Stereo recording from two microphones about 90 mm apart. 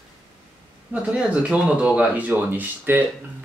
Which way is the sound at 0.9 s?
10° right (ahead or behind).